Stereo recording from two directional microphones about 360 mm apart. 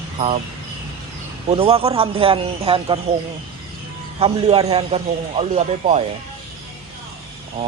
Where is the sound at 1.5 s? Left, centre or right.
Centre.